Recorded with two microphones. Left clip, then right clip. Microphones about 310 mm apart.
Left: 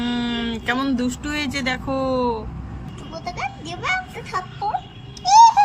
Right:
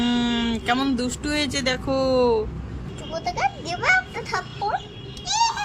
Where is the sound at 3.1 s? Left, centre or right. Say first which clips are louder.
Right 4 dB; centre.